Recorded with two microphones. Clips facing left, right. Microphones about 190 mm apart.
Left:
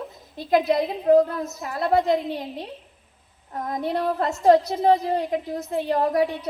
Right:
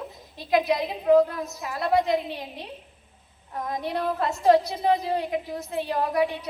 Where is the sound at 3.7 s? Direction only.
45° left (ahead or behind).